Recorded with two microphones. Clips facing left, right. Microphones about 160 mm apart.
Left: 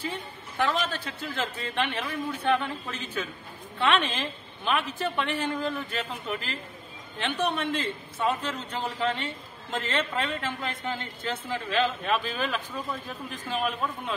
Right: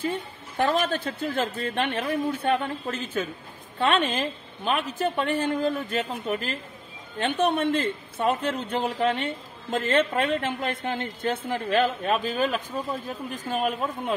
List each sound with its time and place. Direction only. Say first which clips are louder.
0.0 s a man's voice: right 5 dB; 50° right (ahead or behind)